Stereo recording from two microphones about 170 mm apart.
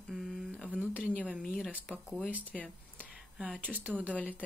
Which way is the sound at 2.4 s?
5° left (ahead or behind).